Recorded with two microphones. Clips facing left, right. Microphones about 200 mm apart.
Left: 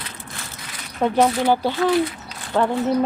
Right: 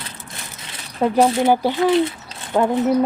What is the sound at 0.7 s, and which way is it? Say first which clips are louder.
Speech: right 2 dB; 30° right (ahead or behind).